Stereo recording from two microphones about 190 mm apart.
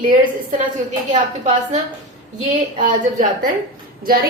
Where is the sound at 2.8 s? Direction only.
45° right (ahead or behind).